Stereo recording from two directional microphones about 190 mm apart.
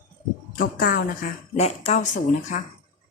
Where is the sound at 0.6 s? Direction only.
50° left (ahead or behind).